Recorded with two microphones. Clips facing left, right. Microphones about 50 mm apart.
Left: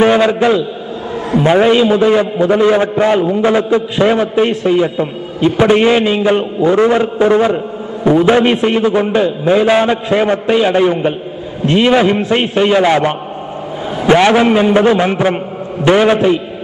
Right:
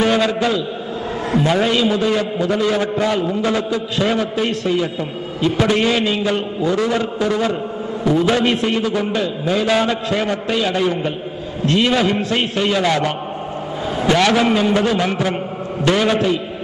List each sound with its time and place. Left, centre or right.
0.0 s a man's voice: left